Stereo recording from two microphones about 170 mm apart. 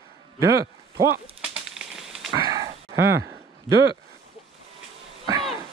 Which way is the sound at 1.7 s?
Centre (ahead or behind).